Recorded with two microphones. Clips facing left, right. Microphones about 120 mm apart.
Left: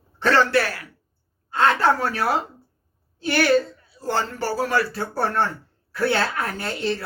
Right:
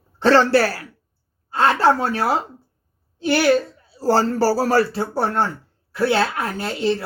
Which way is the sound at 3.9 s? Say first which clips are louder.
Right 8 dB; 35° right (ahead or behind).